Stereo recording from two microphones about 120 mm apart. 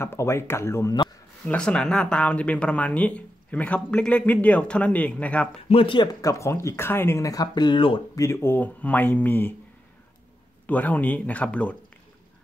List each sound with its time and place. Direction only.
0.0 s speech: 20° left (ahead or behind)
1.5 s speech: 10° left (ahead or behind)
5.7 s speech: 45° left (ahead or behind)
6.2 s speech: 25° left (ahead or behind); by 8.0 s 45° left (ahead or behind)
8.2 s speech: 20° left (ahead or behind)
10.7 s speech: 15° left (ahead or behind)